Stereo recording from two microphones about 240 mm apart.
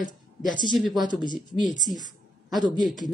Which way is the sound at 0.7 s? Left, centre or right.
Centre.